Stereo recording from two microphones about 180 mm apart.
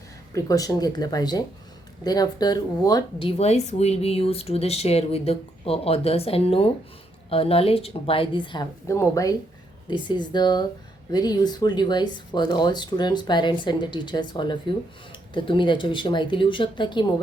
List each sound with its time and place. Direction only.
0.3 s speech: 20° left (ahead or behind)